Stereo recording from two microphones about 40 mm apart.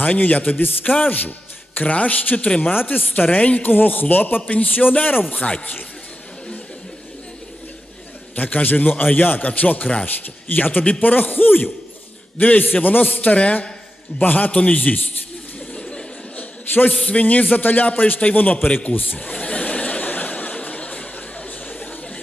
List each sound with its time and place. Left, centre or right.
0.0 s speech: left
2.7 s a man's voice: left
3.2 s a man's voice: left
4.4 s speech: left
8.4 s a man's voice: left
13.3 s speech: left
14.2 s speech: left
15.7 s a sound: left
16.4 s a sound: left
17.0 s a man's voice: left
19.3 s a sound: left